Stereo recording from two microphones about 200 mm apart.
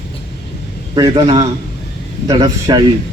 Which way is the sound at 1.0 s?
20° right (ahead or behind).